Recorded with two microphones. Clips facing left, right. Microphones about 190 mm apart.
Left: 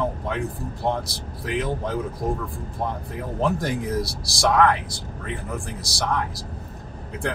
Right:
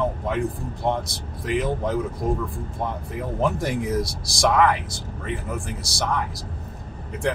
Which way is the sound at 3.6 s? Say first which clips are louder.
Right 1 dB; centre (ahead or behind).